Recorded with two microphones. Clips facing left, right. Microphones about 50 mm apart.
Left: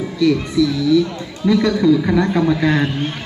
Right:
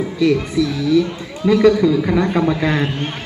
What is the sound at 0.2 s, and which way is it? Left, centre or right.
A man's voice, right.